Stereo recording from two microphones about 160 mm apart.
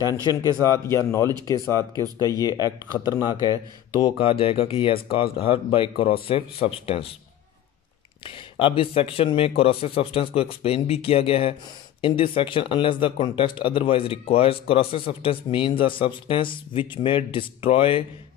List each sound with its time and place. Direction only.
0.0 s speech: 25° left (ahead or behind)
8.3 s speech: 35° left (ahead or behind)